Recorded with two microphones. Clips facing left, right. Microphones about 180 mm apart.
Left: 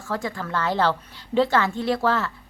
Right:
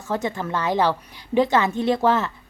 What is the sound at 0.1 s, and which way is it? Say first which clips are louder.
A woman's voice: right 3 dB; 20° right (ahead or behind).